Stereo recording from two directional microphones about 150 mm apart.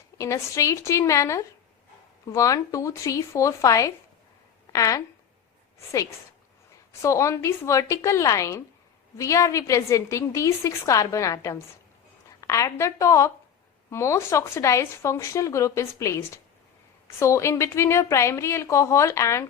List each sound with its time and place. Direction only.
0.2 s a woman's voice: 20° left (ahead or behind)
7.0 s speech: 20° left (ahead or behind)